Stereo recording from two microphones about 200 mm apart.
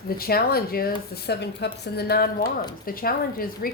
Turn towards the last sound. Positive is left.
turn(degrees=45)  # may be behind; listen again after turning